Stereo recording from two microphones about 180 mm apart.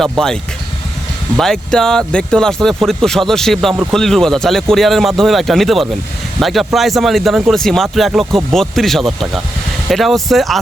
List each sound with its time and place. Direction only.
0.0 s speech: 5° left (ahead or behind)
1.4 s speech: centre (ahead or behind)